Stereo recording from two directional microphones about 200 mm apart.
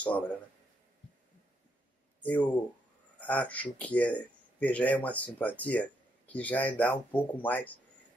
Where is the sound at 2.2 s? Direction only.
5° left (ahead or behind).